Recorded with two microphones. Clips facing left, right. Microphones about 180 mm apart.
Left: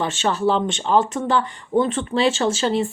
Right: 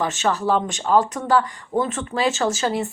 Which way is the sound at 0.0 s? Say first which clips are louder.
Left 1 dB; 30° left (ahead or behind).